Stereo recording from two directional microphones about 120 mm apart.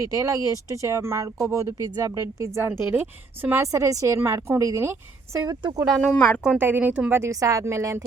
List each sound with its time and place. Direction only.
0.0 s speech: 30° right (ahead or behind)
5.5 s speech: 35° right (ahead or behind)
6.1 s speech: 10° left (ahead or behind)
6.4 s speech: 15° right (ahead or behind)
7.2 s speech: 25° right (ahead or behind)